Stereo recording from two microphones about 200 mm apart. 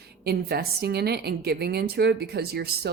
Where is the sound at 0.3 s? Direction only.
50° right (ahead or behind).